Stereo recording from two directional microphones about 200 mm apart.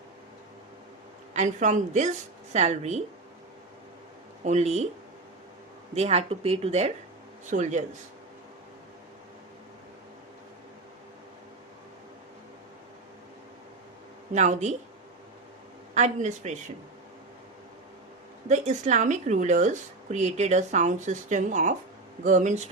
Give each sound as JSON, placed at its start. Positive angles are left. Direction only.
{"t": 1.3, "sound": "speech", "side_deg": -35}
{"t": 4.4, "sound": "speech", "side_deg": -35}
{"t": 5.9, "sound": "speech", "side_deg": -30}
{"t": 14.3, "sound": "speech", "side_deg": -35}
{"t": 16.0, "sound": "speech", "side_deg": -35}
{"t": 18.4, "sound": "speech", "side_deg": -35}